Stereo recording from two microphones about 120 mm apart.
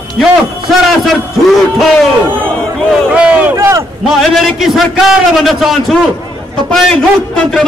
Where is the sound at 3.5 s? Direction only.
25° right (ahead or behind).